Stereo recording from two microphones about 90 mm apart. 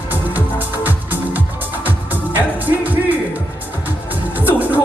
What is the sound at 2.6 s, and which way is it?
Music, 20° right (ahead or behind).